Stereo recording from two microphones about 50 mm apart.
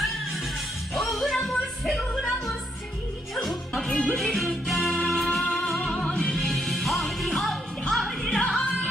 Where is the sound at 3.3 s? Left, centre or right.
Centre.